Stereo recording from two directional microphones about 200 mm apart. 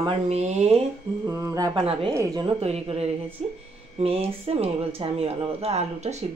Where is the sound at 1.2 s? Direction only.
15° right (ahead or behind).